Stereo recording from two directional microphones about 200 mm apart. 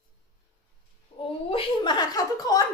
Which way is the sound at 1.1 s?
30° left (ahead or behind).